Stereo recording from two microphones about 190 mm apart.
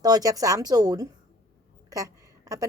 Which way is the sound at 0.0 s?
20° right (ahead or behind).